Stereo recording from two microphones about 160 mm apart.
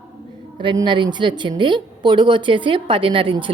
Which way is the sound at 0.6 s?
30° right (ahead or behind).